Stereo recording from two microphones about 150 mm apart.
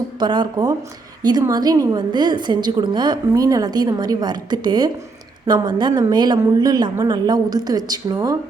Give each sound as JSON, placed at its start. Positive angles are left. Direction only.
{"t": 0.2, "sound": "a woman's voice", "side_deg": -30}